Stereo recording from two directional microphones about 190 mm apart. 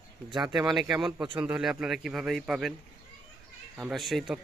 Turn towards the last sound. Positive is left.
turn(degrees=0)  # may be behind; listen again after turning